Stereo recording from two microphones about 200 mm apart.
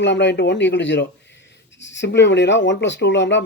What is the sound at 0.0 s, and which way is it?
Speech, 60° left (ahead or behind).